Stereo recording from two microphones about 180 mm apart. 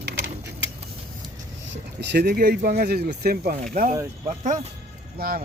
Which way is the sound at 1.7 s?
70° right (ahead or behind).